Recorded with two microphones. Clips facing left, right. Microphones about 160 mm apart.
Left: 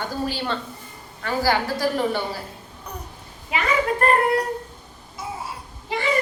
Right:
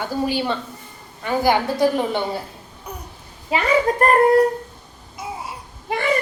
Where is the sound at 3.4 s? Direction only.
35° right (ahead or behind).